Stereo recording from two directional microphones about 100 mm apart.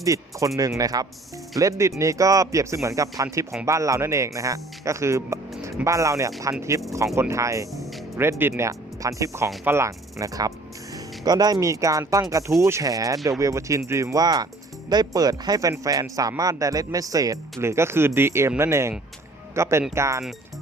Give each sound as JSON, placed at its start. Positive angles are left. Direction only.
{"t": 0.0, "sound": "speech", "side_deg": -35}
{"t": 7.7, "sound": "music", "side_deg": 0}
{"t": 8.1, "sound": "speech", "side_deg": -25}